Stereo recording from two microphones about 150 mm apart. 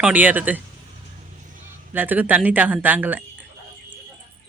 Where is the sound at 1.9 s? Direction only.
10° right (ahead or behind).